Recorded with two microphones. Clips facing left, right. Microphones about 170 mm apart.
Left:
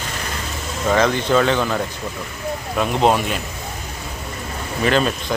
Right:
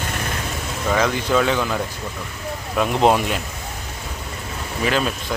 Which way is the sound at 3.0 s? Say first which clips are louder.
Even; 15° left (ahead or behind).